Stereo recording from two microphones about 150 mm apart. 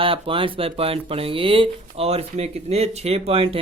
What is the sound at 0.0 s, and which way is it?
Speech, 35° right (ahead or behind).